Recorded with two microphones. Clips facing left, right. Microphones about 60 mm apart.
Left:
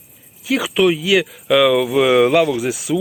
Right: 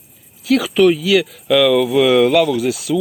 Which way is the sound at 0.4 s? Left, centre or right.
Centre.